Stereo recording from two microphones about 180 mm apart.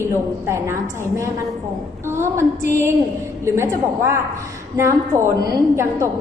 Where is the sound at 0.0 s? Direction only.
15° right (ahead or behind).